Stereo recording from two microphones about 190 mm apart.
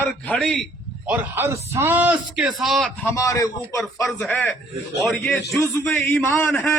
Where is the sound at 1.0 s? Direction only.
10° right (ahead or behind).